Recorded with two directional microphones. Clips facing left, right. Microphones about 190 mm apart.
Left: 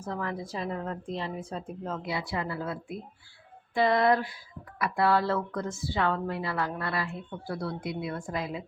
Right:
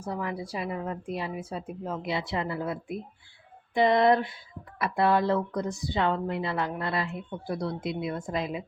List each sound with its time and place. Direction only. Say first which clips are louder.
0.0 s a woman's voice: right 1 dB; 10° right (ahead or behind)
2.0 s speech: right 3 dB; 25° right (ahead or behind)